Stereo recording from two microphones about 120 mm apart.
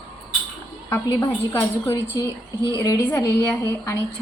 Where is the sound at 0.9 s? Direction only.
15° left (ahead or behind).